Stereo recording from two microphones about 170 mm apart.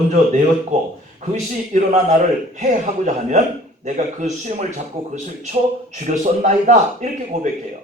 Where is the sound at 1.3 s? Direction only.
45° right (ahead or behind).